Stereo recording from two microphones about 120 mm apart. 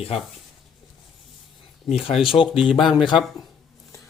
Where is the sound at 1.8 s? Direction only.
55° left (ahead or behind).